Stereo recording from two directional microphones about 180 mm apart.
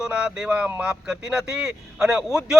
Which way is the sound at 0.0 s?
5° right (ahead or behind).